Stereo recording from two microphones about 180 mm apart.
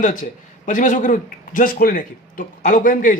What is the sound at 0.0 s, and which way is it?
A man's voice, 45° left (ahead or behind).